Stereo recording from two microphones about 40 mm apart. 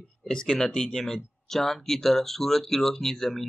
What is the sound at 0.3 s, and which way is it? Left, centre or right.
Speech, left.